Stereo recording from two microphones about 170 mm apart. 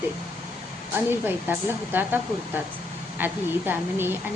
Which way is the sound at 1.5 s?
10° right (ahead or behind).